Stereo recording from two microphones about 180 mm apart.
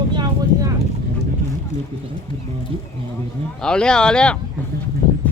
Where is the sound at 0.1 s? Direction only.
25° right (ahead or behind).